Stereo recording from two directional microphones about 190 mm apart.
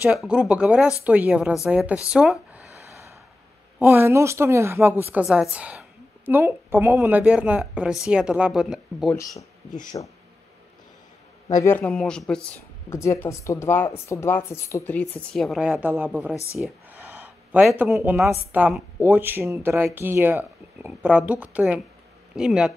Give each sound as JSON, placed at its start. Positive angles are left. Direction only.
{"t": 0.0, "sound": "a woman's voice", "side_deg": -5}
{"t": 2.0, "sound": "a sound", "side_deg": -5}
{"t": 3.8, "sound": "a woman's voice", "side_deg": -10}
{"t": 9.1, "sound": "speech", "side_deg": 15}
{"t": 11.4, "sound": "speech", "side_deg": 15}
{"t": 12.9, "sound": "a woman's voice", "side_deg": 15}
{"t": 16.5, "sound": "a sound", "side_deg": 0}
{"t": 17.9, "sound": "a woman's voice", "side_deg": 0}